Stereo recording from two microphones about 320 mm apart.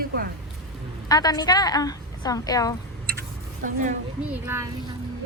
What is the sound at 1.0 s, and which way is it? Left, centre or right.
A woman's voice, centre.